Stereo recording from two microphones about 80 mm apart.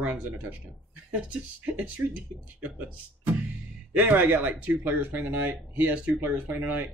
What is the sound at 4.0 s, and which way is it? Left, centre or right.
Speech, right.